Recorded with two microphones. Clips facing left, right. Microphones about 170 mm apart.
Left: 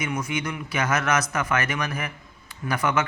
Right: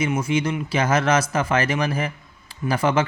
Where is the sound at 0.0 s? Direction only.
30° right (ahead or behind).